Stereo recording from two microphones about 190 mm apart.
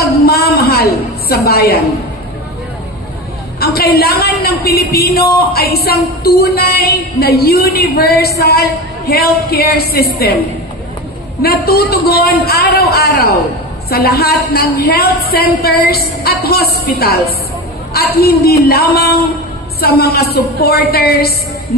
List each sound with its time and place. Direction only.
0.2 s a sound: 55° left (ahead or behind)
1.3 s a woman's voice: 55° left (ahead or behind)
3.5 s a woman's voice: 55° left (ahead or behind)
11.4 s a woman's voice: 55° left (ahead or behind)
17.9 s a woman's voice: 55° left (ahead or behind)